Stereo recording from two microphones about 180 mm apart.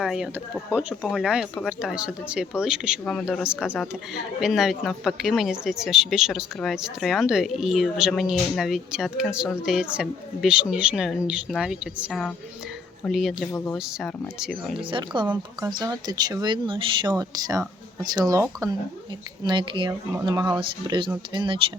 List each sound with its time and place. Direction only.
0.0 s a woman's voice: 5° right (ahead or behind)
14.8 s speech: 30° right (ahead or behind)